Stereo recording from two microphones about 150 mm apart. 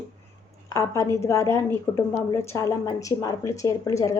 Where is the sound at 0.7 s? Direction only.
20° left (ahead or behind).